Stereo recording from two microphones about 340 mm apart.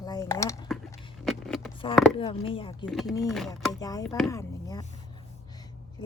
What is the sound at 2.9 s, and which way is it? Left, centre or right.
A woman's voice, centre.